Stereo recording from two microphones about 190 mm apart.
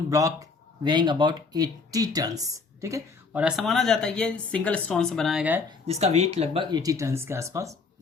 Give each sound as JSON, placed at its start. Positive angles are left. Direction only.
{"t": 0.1, "sound": "speech", "side_deg": -15}
{"t": 5.8, "sound": "speech", "side_deg": -35}